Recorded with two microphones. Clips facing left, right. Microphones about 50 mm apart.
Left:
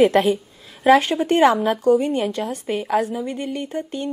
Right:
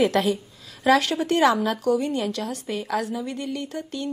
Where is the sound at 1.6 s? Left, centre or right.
Left.